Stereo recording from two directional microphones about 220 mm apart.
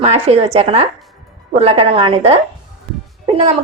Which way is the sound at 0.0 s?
30° right (ahead or behind).